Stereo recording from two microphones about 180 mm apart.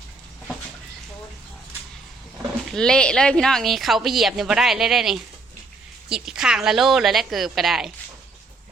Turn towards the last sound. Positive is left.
turn(degrees=0)  # may be behind; listen again after turning